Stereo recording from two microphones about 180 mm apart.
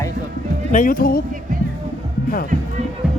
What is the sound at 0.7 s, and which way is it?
Speech, 50° left (ahead or behind).